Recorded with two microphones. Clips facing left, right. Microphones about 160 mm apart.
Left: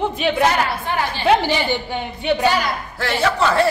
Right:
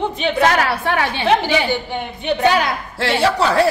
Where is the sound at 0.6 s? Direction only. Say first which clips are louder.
Right 3 dB; 75° right (ahead or behind).